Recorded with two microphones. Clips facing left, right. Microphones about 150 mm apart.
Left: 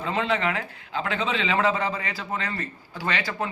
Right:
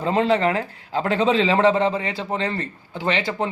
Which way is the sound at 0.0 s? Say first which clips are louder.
Right 6 dB; 35° right (ahead or behind).